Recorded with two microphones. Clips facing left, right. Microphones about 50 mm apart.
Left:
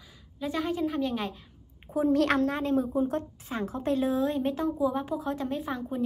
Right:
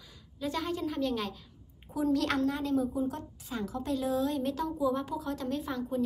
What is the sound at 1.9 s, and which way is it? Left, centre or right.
A woman's voice, left.